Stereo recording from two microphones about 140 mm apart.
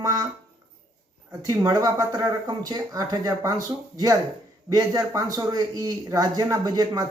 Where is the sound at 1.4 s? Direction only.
25° right (ahead or behind).